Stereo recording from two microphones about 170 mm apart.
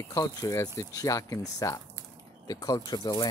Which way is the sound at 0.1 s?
20° left (ahead or behind).